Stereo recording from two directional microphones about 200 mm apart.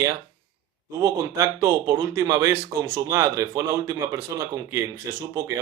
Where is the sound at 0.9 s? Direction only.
15° right (ahead or behind).